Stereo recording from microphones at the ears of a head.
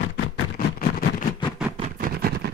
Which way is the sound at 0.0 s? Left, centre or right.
Left.